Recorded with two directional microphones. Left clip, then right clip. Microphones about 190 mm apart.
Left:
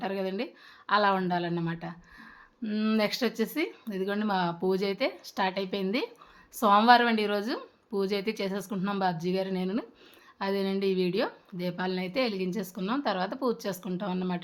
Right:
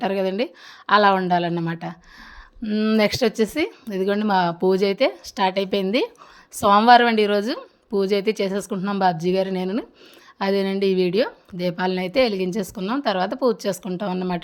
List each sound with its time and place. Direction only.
0.0 s a woman's voice: 40° right (ahead or behind)